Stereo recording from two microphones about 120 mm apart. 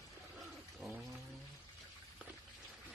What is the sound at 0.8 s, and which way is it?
Speech, centre (ahead or behind).